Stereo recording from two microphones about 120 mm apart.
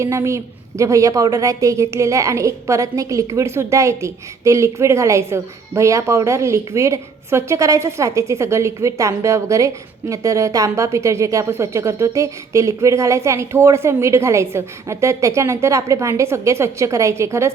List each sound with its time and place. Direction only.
0.0 s a woman's voice: 25° right (ahead or behind)